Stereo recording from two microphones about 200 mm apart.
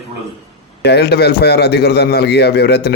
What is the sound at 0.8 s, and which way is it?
A man's voice, 55° left (ahead or behind).